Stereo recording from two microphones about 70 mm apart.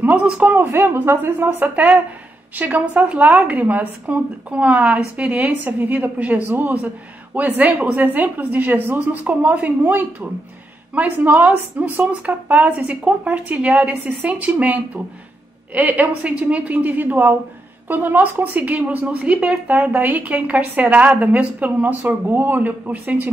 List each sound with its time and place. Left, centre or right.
0.0 s a woman's voice: right